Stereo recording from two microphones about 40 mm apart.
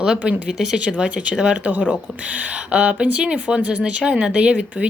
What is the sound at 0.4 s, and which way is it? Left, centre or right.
Speech, centre.